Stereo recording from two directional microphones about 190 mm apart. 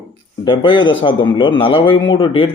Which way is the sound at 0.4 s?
25° left (ahead or behind).